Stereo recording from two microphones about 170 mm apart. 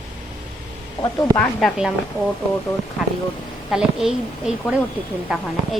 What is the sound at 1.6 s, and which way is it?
Speech, 5° right (ahead or behind).